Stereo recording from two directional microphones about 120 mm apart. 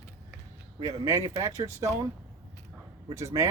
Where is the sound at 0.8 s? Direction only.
25° right (ahead or behind).